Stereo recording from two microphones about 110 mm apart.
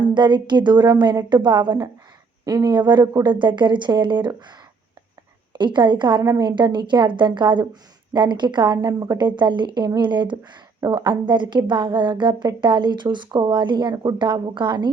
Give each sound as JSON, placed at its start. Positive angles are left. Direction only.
{"t": 0.0, "sound": "a woman's voice", "side_deg": -45}
{"t": 5.5, "sound": "a woman's voice", "side_deg": -45}
{"t": 10.8, "sound": "a woman's voice", "side_deg": -35}